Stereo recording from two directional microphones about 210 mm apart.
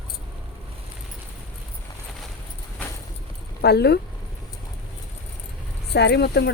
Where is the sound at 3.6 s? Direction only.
50° left (ahead or behind).